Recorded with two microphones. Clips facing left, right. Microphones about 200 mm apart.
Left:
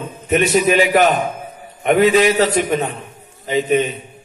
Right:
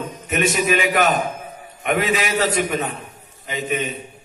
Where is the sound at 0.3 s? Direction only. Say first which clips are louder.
Left 5 dB; 40° left (ahead or behind).